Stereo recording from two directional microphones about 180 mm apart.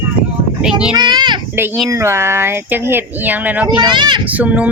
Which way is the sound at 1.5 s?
10° right (ahead or behind).